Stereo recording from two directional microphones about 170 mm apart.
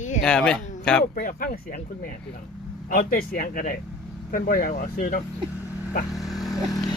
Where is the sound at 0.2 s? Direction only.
5° left (ahead or behind).